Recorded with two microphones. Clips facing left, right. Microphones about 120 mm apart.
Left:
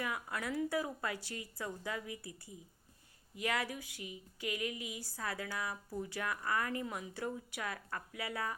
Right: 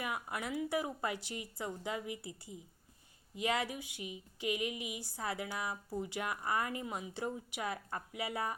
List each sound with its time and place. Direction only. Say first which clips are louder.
0.0 s a woman's voice: even; 20° right (ahead or behind)